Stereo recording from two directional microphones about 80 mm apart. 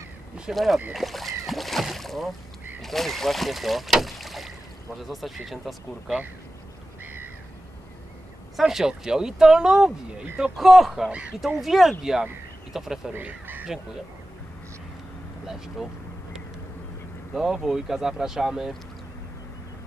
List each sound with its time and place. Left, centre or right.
0.5 s speech: centre
7.0 s crow: right
8.5 s speech: centre
13.1 s speech: right
15.4 s speech: centre
17.3 s speech: centre